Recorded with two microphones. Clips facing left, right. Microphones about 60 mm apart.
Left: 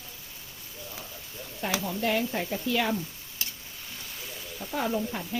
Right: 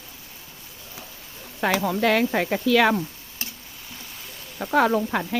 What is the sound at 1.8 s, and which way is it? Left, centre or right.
Speech, right.